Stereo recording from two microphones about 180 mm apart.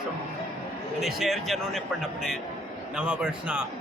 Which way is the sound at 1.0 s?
Centre (ahead or behind).